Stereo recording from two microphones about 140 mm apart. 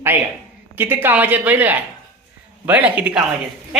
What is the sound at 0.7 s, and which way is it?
Speech, 15° right (ahead or behind).